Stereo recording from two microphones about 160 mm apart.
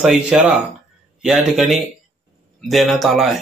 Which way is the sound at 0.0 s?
5° right (ahead or behind).